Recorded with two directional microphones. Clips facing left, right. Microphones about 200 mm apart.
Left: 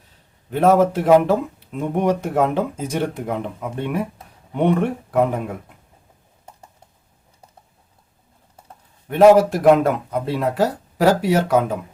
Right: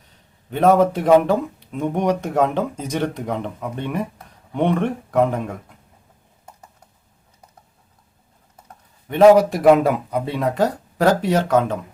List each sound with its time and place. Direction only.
0.5 s speech: 5° left (ahead or behind)
6.4 s a sound: 25° left (ahead or behind)
9.0 s speech: 5° left (ahead or behind)